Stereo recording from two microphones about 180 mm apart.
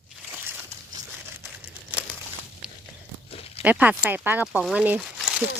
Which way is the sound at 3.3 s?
35° left (ahead or behind).